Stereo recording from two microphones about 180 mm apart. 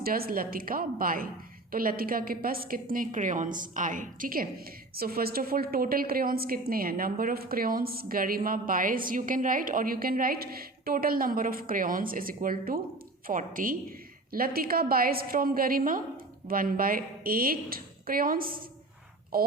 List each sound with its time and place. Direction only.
0.0 s a woman's voice: 55° right (ahead or behind)